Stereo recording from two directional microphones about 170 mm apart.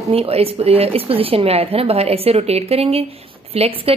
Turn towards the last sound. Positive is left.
turn(degrees=-35)  # may be behind; listen again after turning